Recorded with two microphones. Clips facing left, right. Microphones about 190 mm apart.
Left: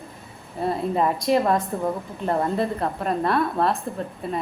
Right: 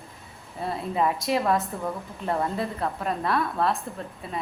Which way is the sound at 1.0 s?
Centre (ahead or behind).